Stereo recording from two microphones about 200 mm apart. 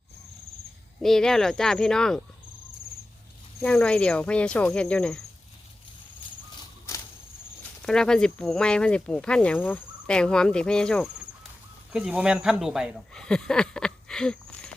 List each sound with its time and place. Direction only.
1.0 s speech: centre (ahead or behind)
3.6 s speech: 5° left (ahead or behind)
6.6 s a sound: 15° left (ahead or behind)
7.8 s speech: 5° left (ahead or behind)